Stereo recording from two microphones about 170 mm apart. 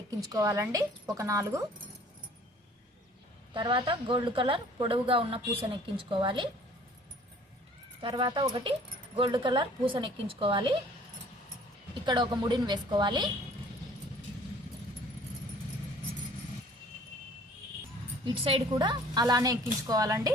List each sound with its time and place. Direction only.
0.3 s speech: 20° right (ahead or behind)
3.5 s speech: 30° right (ahead or behind)
8.0 s speech: 30° right (ahead or behind)
12.0 s speech: 25° right (ahead or behind)
18.3 s speech: 30° right (ahead or behind)